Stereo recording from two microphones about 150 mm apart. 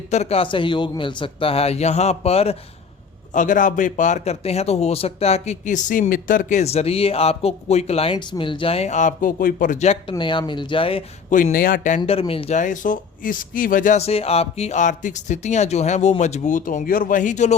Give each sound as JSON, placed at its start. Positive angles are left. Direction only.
{"t": 0.1, "sound": "a man's voice", "side_deg": 45}
{"t": 3.3, "sound": "a man's voice", "side_deg": 60}
{"t": 9.7, "sound": "a man's voice", "side_deg": 45}
{"t": 11.3, "sound": "speech", "side_deg": 60}
{"t": 11.9, "sound": "a man's voice", "side_deg": 40}
{"t": 12.5, "sound": "speech", "side_deg": 60}
{"t": 14.0, "sound": "a man's voice", "side_deg": 40}